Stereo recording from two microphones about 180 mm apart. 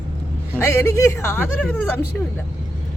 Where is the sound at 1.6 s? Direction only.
5° left (ahead or behind).